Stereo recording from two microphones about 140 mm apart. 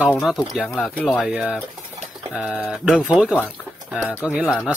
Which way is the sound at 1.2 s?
5° right (ahead or behind).